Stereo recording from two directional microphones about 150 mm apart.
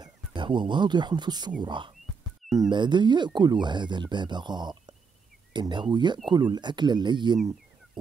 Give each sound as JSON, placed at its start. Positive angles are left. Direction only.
{"t": 0.0, "sound": "speech", "side_deg": -30}